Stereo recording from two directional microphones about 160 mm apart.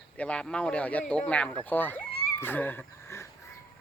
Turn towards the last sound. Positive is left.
turn(degrees=15)  # may be behind; listen again after turning